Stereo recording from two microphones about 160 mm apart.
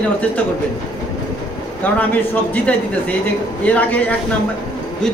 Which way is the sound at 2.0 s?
10° left (ahead or behind).